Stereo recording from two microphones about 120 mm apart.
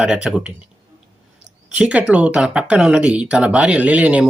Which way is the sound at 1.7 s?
10° right (ahead or behind).